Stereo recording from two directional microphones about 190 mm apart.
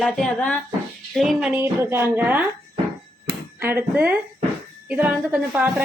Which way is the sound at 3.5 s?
10° right (ahead or behind).